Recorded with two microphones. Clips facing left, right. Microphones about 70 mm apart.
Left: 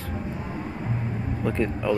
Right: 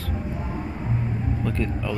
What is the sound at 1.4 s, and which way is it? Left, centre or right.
Speech, centre.